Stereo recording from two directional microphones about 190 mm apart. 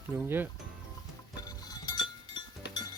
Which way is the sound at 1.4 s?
20° left (ahead or behind).